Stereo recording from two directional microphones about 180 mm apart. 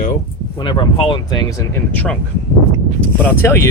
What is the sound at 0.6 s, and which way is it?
Speech, 30° left (ahead or behind).